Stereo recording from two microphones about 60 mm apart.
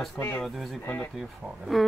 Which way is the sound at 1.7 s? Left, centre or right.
Centre.